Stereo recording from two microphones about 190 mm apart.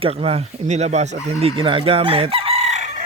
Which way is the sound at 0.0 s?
30° right (ahead or behind).